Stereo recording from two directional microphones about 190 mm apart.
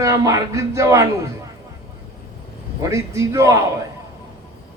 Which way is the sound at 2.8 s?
15° right (ahead or behind).